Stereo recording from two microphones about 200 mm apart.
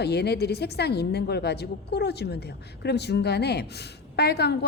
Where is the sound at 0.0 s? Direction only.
55° left (ahead or behind).